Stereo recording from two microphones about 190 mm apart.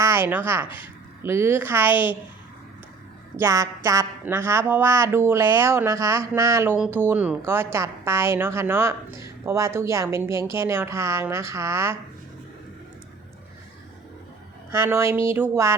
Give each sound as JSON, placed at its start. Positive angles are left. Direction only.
{"t": 0.0, "sound": "a woman's voice", "side_deg": -15}
{"t": 3.3, "sound": "speech", "side_deg": -15}
{"t": 14.7, "sound": "speech", "side_deg": -15}